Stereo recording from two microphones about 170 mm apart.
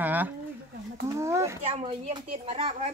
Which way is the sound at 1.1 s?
15° right (ahead or behind).